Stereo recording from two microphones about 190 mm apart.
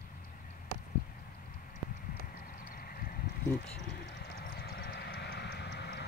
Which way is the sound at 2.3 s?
50° left (ahead or behind).